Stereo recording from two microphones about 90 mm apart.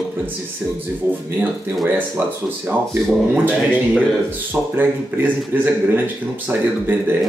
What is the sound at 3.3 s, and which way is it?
Speech, 20° right (ahead or behind).